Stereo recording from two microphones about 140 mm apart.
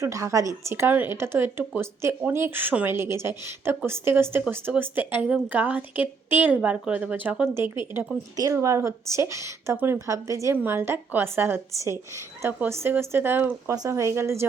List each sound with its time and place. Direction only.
0.0 s speech: 20° right (ahead or behind)